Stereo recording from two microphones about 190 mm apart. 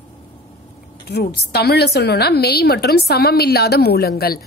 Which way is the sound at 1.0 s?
60° left (ahead or behind).